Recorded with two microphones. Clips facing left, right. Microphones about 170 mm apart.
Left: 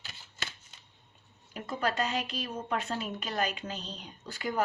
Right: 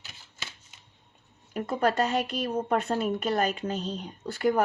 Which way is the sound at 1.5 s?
50° right (ahead or behind).